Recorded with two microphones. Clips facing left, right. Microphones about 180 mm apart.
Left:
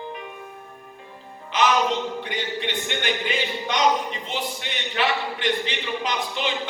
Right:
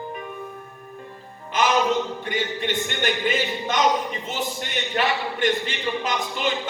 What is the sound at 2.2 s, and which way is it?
A man's voice, 45° right (ahead or behind).